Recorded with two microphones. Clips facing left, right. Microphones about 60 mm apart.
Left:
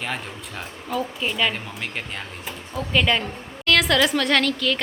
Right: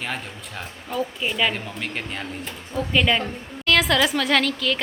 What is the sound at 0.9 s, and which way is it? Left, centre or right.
Speech, centre.